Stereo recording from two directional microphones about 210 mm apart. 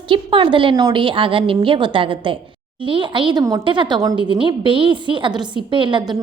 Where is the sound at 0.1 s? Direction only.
25° right (ahead or behind).